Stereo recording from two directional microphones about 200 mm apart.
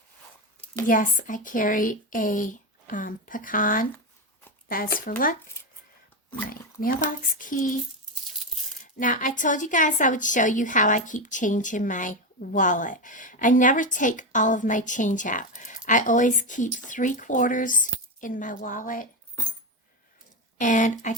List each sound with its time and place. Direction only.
0.9 s a woman's voice: 40° left (ahead or behind)
6.5 s speech: 45° left (ahead or behind)
9.0 s a woman's voice: 40° left (ahead or behind)
20.6 s a woman's voice: 40° left (ahead or behind)